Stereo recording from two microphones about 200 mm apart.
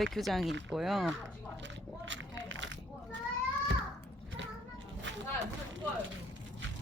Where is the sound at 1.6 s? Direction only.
65° right (ahead or behind).